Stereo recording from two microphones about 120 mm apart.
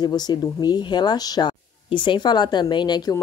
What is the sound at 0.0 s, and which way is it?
Speech, 35° left (ahead or behind).